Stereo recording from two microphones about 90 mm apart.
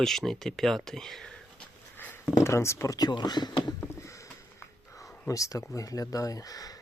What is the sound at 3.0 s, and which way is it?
Speech, 55° left (ahead or behind).